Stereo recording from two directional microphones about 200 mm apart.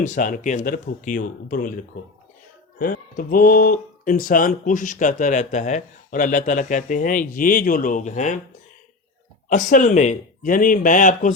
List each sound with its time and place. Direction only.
0.0 s speech: 40° left (ahead or behind)
2.7 s speech: 45° left (ahead or behind)
9.5 s speech: 40° left (ahead or behind)